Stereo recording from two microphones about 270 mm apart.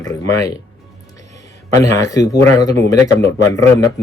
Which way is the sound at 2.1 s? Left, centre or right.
Centre.